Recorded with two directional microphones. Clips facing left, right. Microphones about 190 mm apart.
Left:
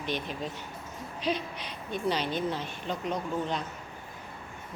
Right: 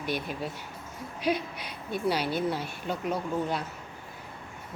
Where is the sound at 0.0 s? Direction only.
10° right (ahead or behind).